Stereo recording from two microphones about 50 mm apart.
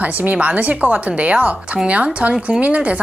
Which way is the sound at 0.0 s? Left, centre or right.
Right.